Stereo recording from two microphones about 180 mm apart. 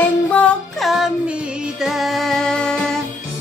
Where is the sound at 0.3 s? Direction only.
Centre (ahead or behind).